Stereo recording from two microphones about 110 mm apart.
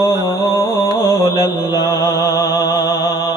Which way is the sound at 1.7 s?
35° left (ahead or behind).